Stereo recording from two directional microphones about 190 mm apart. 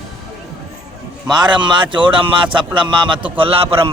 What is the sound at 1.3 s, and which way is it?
A man's voice, 25° right (ahead or behind).